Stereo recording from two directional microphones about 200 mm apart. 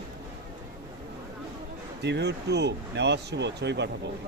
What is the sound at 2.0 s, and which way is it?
Speech, 60° right (ahead or behind).